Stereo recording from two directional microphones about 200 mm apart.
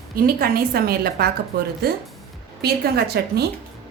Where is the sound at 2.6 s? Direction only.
50° right (ahead or behind).